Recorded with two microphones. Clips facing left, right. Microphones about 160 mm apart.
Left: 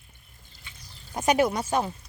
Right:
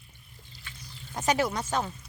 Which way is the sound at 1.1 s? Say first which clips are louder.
Left 4 dB; 15° left (ahead or behind).